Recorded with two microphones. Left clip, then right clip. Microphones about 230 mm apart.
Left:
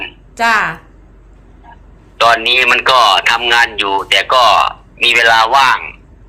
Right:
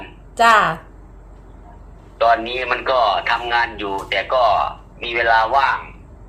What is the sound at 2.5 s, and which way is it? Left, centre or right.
Speech, left.